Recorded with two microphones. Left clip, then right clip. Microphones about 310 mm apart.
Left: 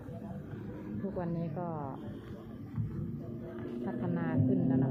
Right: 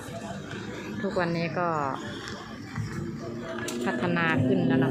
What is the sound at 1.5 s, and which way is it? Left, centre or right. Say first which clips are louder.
Speech: right 15 dB; right.